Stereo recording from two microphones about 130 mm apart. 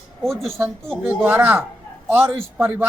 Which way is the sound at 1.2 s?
15° right (ahead or behind).